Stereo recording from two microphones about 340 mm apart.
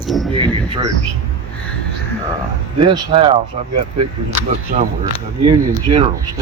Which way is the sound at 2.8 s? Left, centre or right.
Centre.